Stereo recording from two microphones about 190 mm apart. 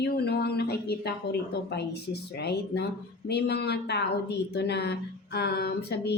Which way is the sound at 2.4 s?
60° left (ahead or behind).